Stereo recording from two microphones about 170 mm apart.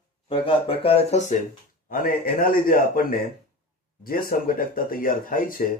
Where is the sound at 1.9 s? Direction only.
60° left (ahead or behind).